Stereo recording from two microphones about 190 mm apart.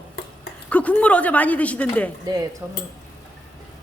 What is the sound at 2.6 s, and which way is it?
Speech, 10° right (ahead or behind).